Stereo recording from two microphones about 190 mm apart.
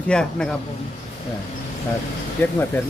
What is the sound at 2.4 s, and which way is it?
Speech, 10° left (ahead or behind).